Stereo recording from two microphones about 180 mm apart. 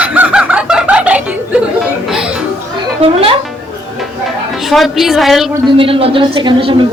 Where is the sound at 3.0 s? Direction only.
30° right (ahead or behind).